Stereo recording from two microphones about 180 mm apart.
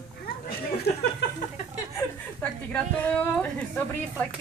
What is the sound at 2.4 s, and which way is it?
Speech, 10° left (ahead or behind).